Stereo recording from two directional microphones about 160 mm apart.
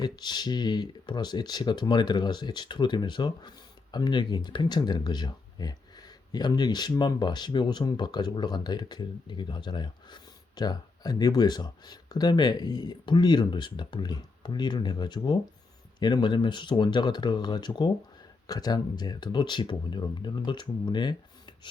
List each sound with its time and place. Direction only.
0.0 s speech: 25° left (ahead or behind)